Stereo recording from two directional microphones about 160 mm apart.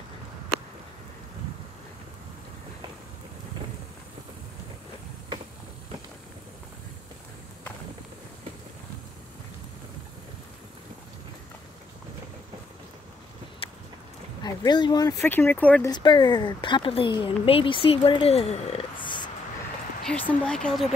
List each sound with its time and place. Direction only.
13.6 s a sound: 35° left (ahead or behind)
14.4 s speech: 25° left (ahead or behind); by 15.9 s 10° left (ahead or behind)
15.9 s speech: 30° left (ahead or behind)
20.0 s speech: 5° left (ahead or behind)